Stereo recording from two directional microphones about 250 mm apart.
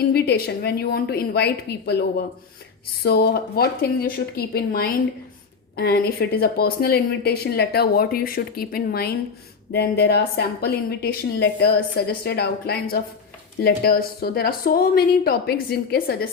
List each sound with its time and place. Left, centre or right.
0.1 s speech: left